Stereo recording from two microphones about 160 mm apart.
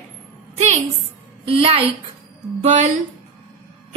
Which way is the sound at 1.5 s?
35° right (ahead or behind).